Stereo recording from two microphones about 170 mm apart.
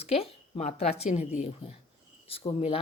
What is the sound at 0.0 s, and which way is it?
A man's voice, 35° left (ahead or behind).